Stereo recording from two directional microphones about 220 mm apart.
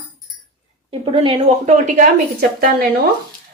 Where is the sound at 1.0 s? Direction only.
25° right (ahead or behind).